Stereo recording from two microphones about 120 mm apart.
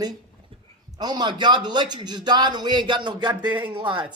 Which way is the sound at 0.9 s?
35° right (ahead or behind).